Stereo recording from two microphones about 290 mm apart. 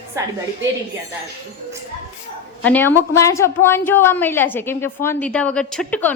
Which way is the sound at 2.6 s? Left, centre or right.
Centre.